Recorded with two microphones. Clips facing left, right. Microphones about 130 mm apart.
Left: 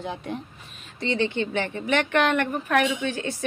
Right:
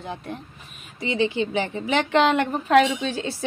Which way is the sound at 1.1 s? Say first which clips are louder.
Right 2 dB; 15° right (ahead or behind).